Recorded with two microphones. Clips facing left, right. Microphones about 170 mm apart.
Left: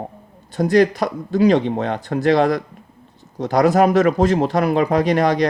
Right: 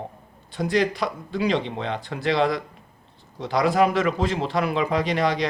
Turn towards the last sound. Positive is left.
turn(degrees=45)  # may be behind; listen again after turning